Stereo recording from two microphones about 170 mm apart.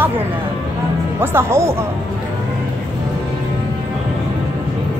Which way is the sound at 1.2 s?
15° right (ahead or behind).